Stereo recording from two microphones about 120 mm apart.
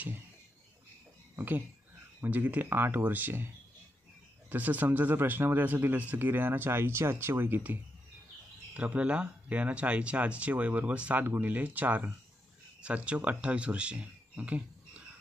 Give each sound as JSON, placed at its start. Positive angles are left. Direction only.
{"t": 1.3, "sound": "speech", "side_deg": -15}
{"t": 4.5, "sound": "speech", "side_deg": -15}